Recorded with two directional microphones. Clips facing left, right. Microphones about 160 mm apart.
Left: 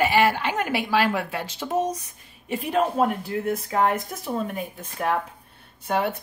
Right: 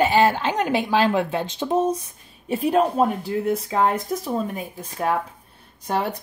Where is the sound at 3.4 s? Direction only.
35° right (ahead or behind).